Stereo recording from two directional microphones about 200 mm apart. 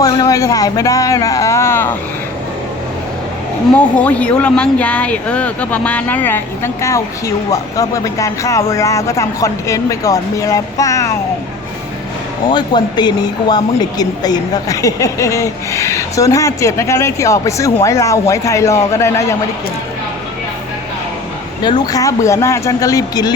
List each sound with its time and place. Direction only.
0.0 s speech: 20° left (ahead or behind)
3.8 s speech: 5° left (ahead or behind)
12.5 s speech: 20° left (ahead or behind)
21.6 s speech: 20° left (ahead or behind)